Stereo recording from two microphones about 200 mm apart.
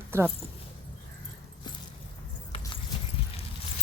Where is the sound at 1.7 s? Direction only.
20° left (ahead or behind).